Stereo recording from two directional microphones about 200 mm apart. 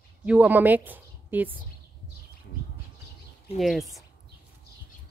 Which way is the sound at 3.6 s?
Centre (ahead or behind).